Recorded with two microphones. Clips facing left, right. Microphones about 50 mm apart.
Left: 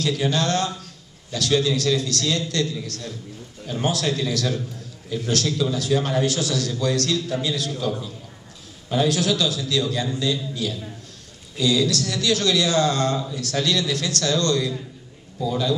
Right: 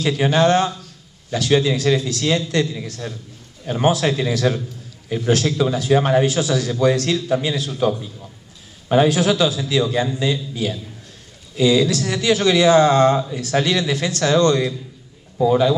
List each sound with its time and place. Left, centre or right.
0.0 s speech: right
8.8 s speech: right
15.3 s a man's voice: right